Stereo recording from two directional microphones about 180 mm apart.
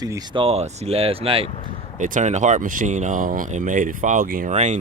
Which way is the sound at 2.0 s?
45° right (ahead or behind).